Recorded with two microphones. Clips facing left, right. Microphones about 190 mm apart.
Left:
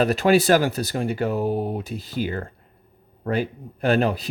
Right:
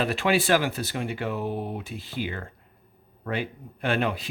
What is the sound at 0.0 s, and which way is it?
Speech, 40° left (ahead or behind).